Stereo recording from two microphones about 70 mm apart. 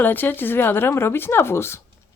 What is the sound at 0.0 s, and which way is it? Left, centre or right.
Speech, left.